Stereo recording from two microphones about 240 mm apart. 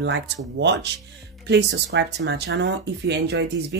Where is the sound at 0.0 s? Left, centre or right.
Right.